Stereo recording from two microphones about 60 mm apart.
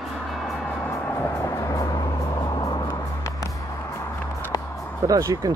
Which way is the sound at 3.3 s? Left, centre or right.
Left.